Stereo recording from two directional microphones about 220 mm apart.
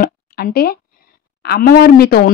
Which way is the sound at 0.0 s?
45° left (ahead or behind).